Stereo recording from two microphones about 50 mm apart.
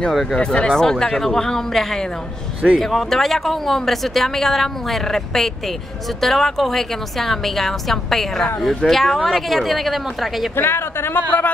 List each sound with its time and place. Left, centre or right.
0.1 s speech: centre
0.4 s speech: centre
10.5 s speech: left